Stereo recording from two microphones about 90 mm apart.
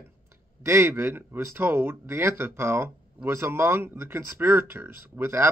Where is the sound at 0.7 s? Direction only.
25° right (ahead or behind).